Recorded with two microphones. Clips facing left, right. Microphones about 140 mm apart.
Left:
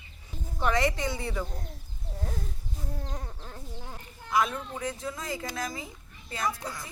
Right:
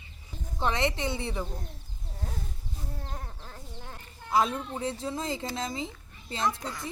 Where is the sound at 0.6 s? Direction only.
25° right (ahead or behind).